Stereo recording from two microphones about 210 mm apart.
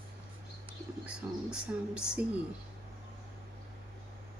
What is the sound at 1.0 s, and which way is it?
Speech, 5° right (ahead or behind).